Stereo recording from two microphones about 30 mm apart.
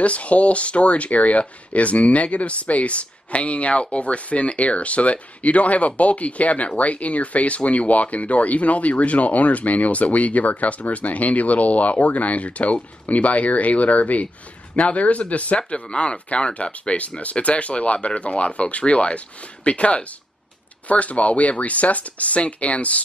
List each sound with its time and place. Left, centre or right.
0.0 s speech: left
15.7 s speech: left